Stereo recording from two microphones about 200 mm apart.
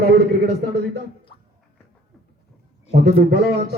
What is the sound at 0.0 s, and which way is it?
A man's voice, 55° right (ahead or behind).